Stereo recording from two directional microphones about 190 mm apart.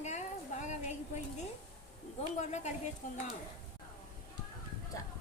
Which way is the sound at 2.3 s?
35° left (ahead or behind).